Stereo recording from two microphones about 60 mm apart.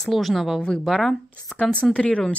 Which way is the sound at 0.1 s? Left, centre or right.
Centre.